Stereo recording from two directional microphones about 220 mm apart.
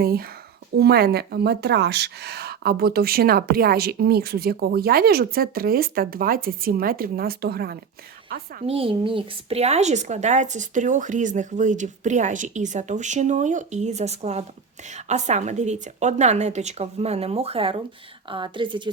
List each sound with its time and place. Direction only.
0.0 s speech: 45° right (ahead or behind)
8.6 s a woman's voice: 25° right (ahead or behind)